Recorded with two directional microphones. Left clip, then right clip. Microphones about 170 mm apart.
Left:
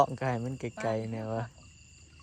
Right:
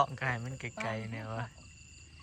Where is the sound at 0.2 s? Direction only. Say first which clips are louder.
Left 3 dB; 30° left (ahead or behind).